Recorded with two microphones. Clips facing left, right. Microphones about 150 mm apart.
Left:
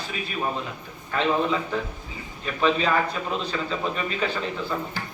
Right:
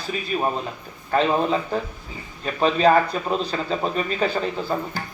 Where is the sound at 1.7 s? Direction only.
40° right (ahead or behind).